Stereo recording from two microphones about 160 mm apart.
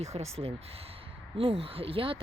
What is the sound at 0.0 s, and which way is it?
Speech, 40° right (ahead or behind).